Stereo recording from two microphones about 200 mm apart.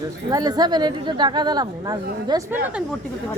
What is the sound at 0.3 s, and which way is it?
Speech, 20° right (ahead or behind).